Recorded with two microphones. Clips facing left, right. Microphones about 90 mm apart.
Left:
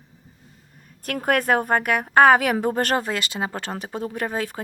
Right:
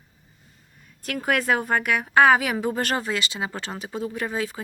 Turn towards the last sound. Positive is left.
turn(degrees=50)  # may be behind; listen again after turning